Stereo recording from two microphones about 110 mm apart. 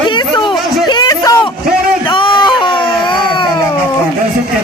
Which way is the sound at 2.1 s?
50° left (ahead or behind).